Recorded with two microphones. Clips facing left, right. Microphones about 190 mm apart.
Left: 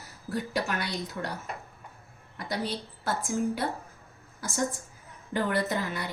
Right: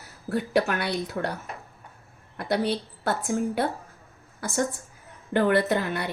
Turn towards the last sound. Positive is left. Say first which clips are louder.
# right 5 dB
turn(degrees=-65)  # may be behind; listen again after turning